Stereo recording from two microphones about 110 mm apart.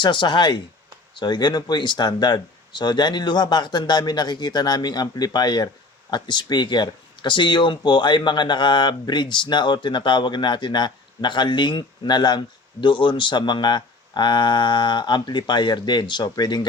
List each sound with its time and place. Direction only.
0.0 s speech: 45° left (ahead or behind)